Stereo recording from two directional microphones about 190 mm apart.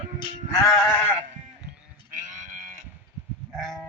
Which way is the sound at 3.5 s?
Centre (ahead or behind).